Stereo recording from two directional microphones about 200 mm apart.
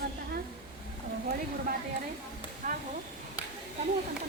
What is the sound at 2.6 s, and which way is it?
Speech, 40° right (ahead or behind).